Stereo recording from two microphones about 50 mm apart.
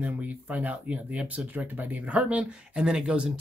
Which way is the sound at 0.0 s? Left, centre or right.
Right.